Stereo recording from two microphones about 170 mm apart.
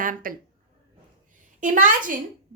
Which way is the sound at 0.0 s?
55° right (ahead or behind).